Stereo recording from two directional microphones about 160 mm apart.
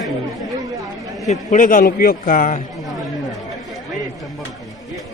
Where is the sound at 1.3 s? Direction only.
55° left (ahead or behind).